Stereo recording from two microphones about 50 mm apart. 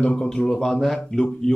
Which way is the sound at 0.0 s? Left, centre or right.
Left.